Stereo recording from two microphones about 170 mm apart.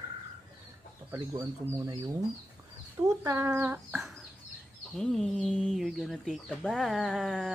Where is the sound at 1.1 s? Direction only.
15° right (ahead or behind).